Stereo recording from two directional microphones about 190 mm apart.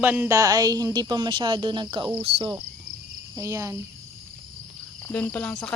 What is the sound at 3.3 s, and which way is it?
Speech, 15° right (ahead or behind).